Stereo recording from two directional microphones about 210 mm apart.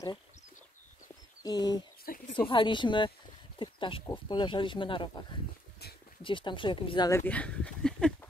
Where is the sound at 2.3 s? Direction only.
25° left (ahead or behind); by 8.3 s 5° left (ahead or behind).